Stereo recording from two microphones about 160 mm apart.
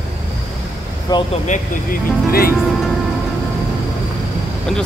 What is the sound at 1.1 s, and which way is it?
Speech, 25° left (ahead or behind).